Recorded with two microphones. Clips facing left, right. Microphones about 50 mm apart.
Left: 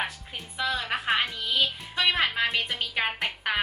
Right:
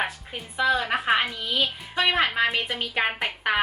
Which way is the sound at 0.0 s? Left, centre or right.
Centre.